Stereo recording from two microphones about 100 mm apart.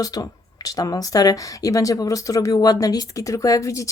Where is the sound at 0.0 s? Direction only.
35° left (ahead or behind).